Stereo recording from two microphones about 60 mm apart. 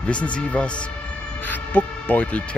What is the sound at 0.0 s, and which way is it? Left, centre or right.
Speech, centre.